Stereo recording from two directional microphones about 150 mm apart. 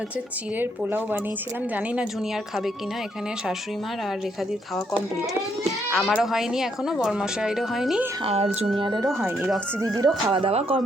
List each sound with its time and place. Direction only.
0.6 s speech: 15° right (ahead or behind)
5.9 s speech: centre (ahead or behind)
8.8 s speech: 30° right (ahead or behind)
10.4 s speech: 40° right (ahead or behind)